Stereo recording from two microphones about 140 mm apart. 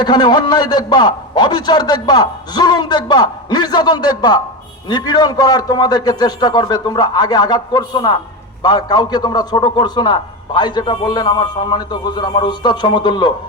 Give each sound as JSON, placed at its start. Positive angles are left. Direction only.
{"t": 0.0, "sound": "a man's voice", "side_deg": 30}